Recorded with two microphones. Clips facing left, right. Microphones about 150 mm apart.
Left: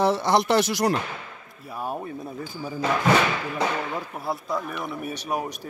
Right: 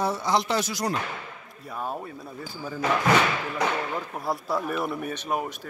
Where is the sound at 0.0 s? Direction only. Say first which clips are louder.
Left 4 dB; 85° left.